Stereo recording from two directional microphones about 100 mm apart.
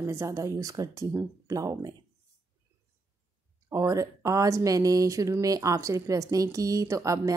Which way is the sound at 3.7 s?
35° right (ahead or behind).